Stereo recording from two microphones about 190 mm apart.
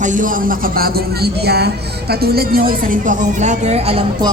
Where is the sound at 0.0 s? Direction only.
45° right (ahead or behind).